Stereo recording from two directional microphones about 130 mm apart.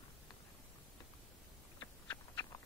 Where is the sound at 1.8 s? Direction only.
25° left (ahead or behind).